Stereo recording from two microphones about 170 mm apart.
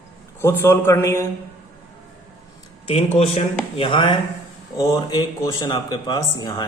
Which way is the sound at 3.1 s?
40° left (ahead or behind).